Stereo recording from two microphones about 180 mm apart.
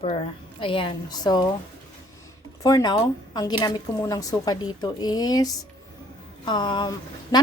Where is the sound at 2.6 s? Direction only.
20° left (ahead or behind).